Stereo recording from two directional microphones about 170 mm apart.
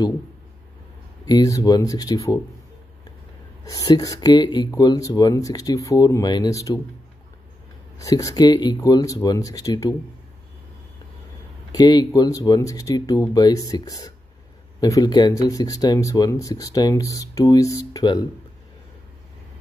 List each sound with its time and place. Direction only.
1.2 s speech: 20° left (ahead or behind)
3.6 s speech: 20° left (ahead or behind)
8.0 s speech: 20° left (ahead or behind)
11.7 s speech: 25° left (ahead or behind)